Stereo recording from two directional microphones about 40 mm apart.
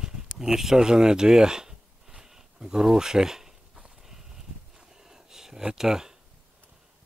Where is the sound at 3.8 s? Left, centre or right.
Centre.